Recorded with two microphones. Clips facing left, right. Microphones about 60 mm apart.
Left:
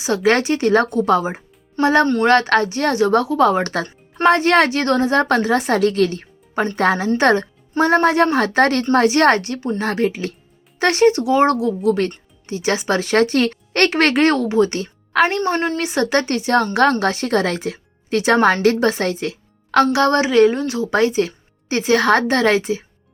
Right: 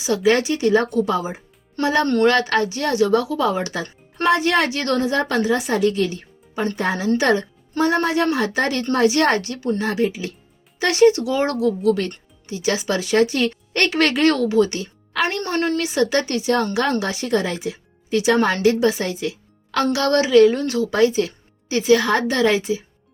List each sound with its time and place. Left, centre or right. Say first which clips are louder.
0.0 s a woman's voice: left 1 dB; left
1.1 s a woman's voice: left 6 dB; left
1.8 s a woman's voice: left 2 dB; left
7.2 s a woman's voice: left 3 dB; left
8.8 s speech: left 3 dB; left
9.8 s a woman's voice: left 4 dB; left
13.9 s a woman's voice: left 1 dB; left
19.9 s a woman's voice: even; left
20.6 s a woman's voice: even; left
22.0 s a woman's voice: left 3 dB; left